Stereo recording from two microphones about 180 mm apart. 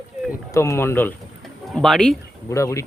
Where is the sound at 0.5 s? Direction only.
15° left (ahead or behind).